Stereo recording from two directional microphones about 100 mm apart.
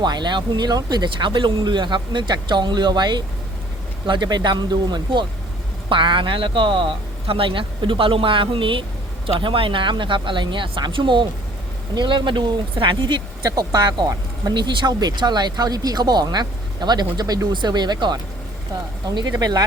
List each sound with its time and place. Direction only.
0.0 s a man's voice: 45° right (ahead or behind)